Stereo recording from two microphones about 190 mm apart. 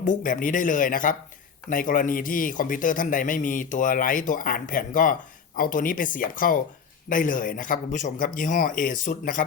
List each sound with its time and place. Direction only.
0.0 s speech: 45° left (ahead or behind)